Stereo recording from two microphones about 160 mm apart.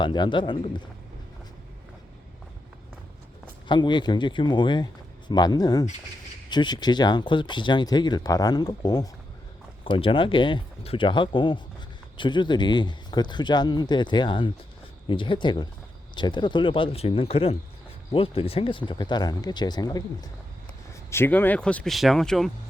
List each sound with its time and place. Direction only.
0.0 s speech: 30° left (ahead or behind)
3.7 s speech: 30° left (ahead or behind)
21.1 s speech: 15° left (ahead or behind)